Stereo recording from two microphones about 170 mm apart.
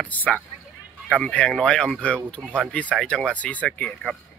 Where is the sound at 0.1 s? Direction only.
10° left (ahead or behind).